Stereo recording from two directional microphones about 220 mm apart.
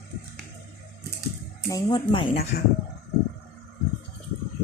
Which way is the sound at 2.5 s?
45° left (ahead or behind).